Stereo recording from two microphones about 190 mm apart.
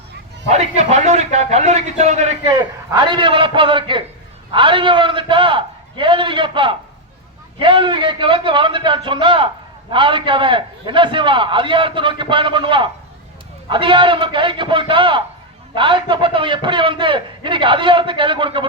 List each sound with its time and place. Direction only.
0.4 s a man's voice: 35° right (ahead or behind)
2.9 s a man's voice: 25° right (ahead or behind)